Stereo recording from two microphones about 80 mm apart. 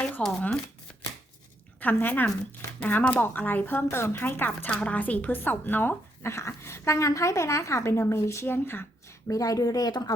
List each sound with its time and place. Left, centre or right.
0.2 s speech: centre
1.8 s a woman's voice: left